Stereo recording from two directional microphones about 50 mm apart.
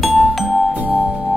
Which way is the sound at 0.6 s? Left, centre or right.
Right.